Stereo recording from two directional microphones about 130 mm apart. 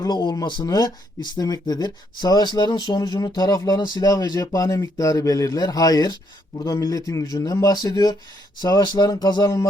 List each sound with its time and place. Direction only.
0.0 s speech: 35° left (ahead or behind)